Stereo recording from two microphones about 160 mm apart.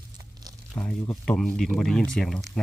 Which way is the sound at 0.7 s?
10° left (ahead or behind).